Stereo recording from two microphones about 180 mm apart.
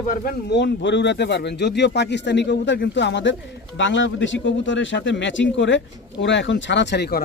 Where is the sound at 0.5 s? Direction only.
75° left (ahead or behind).